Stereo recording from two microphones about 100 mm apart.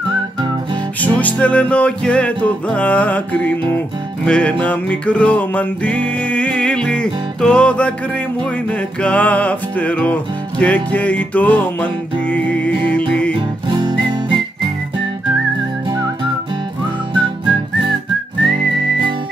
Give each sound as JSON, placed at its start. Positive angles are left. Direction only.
{"t": 1.0, "sound": "music", "side_deg": 15}
{"t": 9.0, "sound": "music", "side_deg": 15}
{"t": 13.7, "sound": "music", "side_deg": -55}